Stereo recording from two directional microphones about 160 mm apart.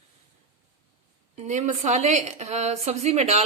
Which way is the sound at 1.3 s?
45° right (ahead or behind).